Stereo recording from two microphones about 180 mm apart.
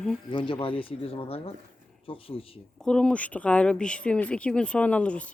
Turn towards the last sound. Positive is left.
turn(degrees=5)  # may be behind; listen again after turning